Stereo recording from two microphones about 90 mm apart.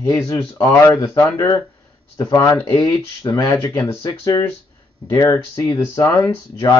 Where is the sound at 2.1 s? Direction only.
45° left (ahead or behind).